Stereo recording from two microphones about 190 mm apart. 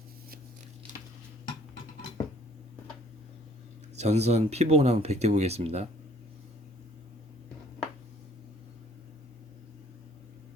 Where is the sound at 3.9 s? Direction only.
35° right (ahead or behind).